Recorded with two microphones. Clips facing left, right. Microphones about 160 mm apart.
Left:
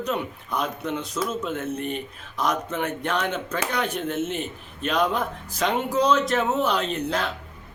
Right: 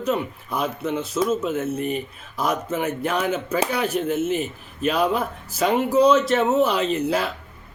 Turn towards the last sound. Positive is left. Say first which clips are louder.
# right 4 dB
turn(degrees=-5)  # may be behind; listen again after turning